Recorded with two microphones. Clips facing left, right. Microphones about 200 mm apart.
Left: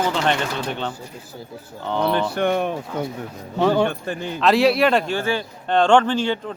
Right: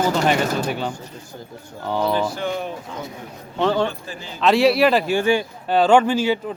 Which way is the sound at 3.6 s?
10° left (ahead or behind).